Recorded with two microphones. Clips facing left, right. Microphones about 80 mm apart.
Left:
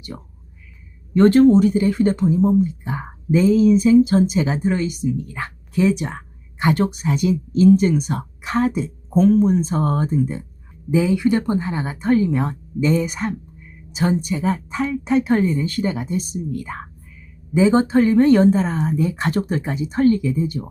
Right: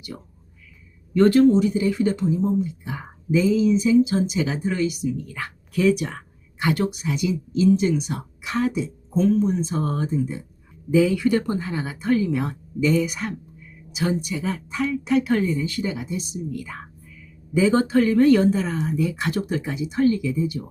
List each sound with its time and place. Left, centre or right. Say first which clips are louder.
1.1 s a woman's voice: left 3 dB; left
10.9 s a woman's voice: left 1 dB; left
17.5 s a woman's voice: left 3 dB; left